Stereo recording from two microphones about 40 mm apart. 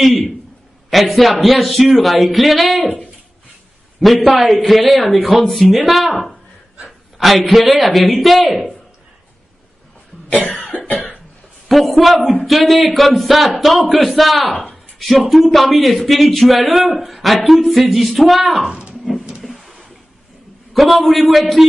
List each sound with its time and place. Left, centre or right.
0.0 s speech: centre
4.0 s speech: centre
7.2 s speech: centre
11.7 s speech: centre
18.6 s a sound: right
19.4 s a sound: centre
20.7 s speech: centre